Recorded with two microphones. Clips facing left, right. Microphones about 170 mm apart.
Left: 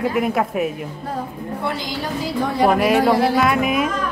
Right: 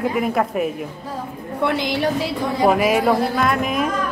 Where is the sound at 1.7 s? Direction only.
65° right (ahead or behind).